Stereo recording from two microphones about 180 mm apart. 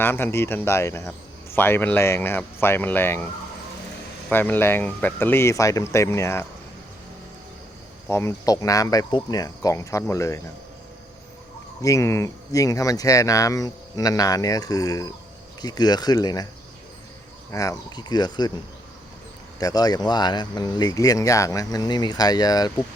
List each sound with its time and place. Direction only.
0.0 s speech: 10° left (ahead or behind)
4.3 s speech: 10° left (ahead or behind)
8.0 s speech: 15° left (ahead or behind)
11.8 s speech: 15° left (ahead or behind)
17.5 s speech: 20° left (ahead or behind)
19.5 s speech: 20° left (ahead or behind)